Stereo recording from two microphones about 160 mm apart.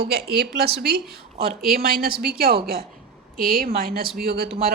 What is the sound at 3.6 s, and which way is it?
Speech, 65° right (ahead or behind).